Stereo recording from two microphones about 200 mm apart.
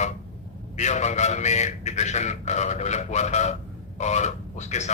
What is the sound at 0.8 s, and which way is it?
A man's voice, 35° left (ahead or behind).